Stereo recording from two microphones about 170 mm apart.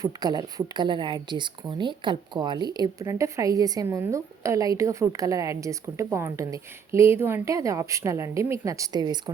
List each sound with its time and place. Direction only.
0.0 s speech: 25° right (ahead or behind)